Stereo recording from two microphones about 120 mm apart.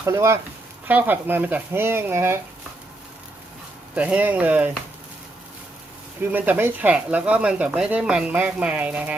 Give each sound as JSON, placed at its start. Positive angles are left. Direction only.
{"t": 0.0, "sound": "speech", "side_deg": -20}
{"t": 3.9, "sound": "speech", "side_deg": -10}
{"t": 6.3, "sound": "speech", "side_deg": -15}